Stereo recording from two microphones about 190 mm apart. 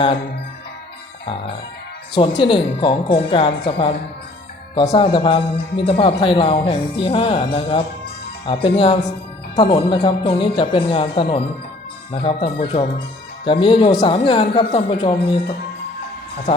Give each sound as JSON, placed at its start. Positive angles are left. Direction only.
{"t": 1.2, "sound": "music", "side_deg": 25}
{"t": 2.1, "sound": "speech", "side_deg": 25}